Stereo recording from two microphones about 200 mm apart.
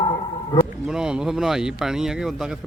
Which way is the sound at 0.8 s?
5° right (ahead or behind).